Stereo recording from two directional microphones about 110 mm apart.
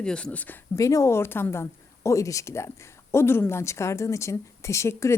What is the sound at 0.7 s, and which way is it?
A woman's voice, 30° left (ahead or behind).